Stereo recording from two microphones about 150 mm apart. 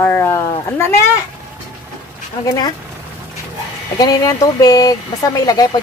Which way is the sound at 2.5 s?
25° left (ahead or behind).